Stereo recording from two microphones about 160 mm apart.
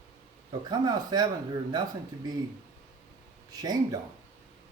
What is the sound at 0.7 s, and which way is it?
A man's voice, 25° right (ahead or behind).